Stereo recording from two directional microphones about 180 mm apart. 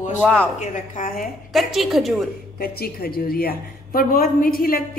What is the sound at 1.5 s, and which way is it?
Speech, centre (ahead or behind).